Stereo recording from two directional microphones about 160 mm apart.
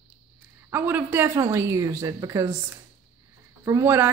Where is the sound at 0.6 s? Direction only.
10° right (ahead or behind).